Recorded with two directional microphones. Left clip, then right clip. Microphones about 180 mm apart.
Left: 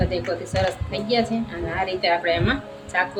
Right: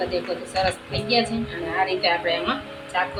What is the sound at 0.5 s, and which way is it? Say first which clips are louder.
Speech: right 2 dB; 50° left (ahead or behind).